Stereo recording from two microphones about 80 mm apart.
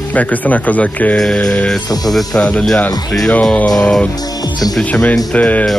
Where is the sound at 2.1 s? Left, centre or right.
Centre.